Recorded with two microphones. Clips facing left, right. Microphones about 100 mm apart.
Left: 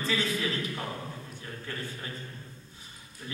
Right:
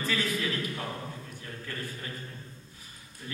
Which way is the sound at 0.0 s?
25° left (ahead or behind).